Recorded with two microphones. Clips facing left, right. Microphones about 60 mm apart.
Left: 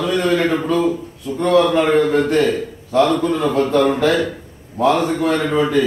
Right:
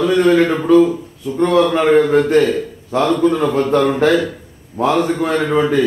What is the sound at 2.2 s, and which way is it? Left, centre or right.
A man's voice, centre.